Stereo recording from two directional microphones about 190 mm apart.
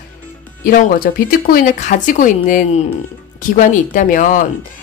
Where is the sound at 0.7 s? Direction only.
50° left (ahead or behind).